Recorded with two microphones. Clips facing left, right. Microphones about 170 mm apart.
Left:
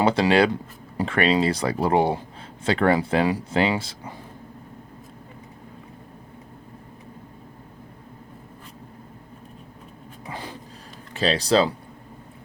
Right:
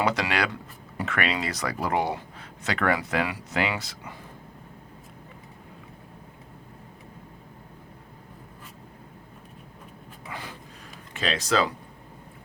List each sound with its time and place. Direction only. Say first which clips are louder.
0.0 s speech: left 7 dB; 30° left (ahead or behind)
10.2 s a sound: left 3 dB; 30° left (ahead or behind)
11.1 s speech: left 6 dB; 35° left (ahead or behind)